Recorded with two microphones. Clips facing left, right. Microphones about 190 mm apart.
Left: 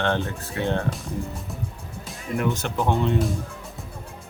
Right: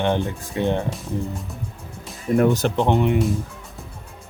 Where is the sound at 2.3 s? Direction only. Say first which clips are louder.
Right 7 dB; 40° right (ahead or behind).